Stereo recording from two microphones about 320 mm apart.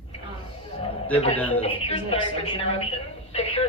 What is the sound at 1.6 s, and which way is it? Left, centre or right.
A woman's voice, centre.